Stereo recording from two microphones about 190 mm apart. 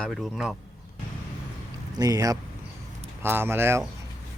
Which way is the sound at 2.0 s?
20° right (ahead or behind).